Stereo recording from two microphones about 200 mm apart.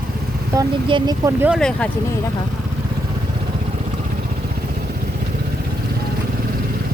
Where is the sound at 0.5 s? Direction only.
20° right (ahead or behind).